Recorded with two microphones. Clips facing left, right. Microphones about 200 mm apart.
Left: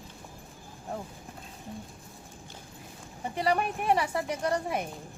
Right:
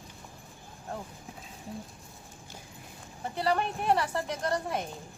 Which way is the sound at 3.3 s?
10° left (ahead or behind).